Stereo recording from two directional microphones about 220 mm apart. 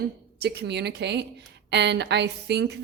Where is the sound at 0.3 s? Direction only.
50° right (ahead or behind).